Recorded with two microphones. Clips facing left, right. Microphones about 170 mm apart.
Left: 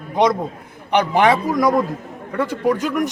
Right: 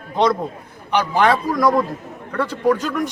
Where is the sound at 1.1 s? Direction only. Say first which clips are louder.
Even; 20° left (ahead or behind).